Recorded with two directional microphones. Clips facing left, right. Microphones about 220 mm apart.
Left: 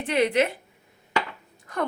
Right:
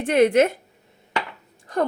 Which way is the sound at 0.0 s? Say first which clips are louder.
Right 6 dB; 50° right (ahead or behind).